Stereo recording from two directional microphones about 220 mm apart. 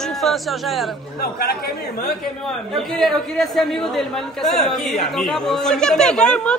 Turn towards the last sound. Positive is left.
turn(degrees=5)  # may be behind; listen again after turning